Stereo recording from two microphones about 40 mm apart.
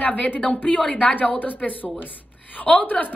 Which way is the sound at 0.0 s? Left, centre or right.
Left.